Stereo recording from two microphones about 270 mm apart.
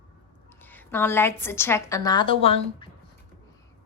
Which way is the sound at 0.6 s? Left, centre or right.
Centre.